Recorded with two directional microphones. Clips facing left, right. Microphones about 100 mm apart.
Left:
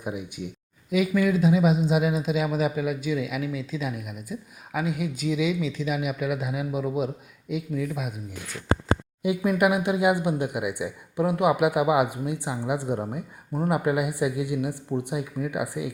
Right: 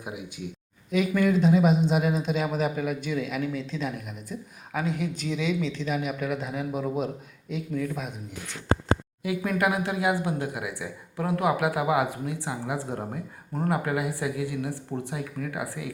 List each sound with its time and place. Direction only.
0.9 s a man's voice: 5° left (ahead or behind)
9.4 s speech: 15° left (ahead or behind)